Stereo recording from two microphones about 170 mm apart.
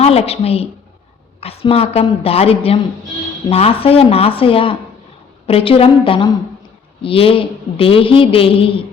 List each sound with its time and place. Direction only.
0.0 s a man's voice: 35° left (ahead or behind)